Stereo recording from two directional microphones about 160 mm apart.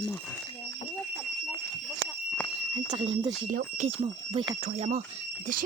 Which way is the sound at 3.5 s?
55° right (ahead or behind).